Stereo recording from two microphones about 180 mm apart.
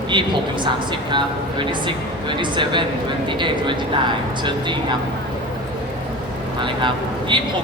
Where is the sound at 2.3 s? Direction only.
25° right (ahead or behind).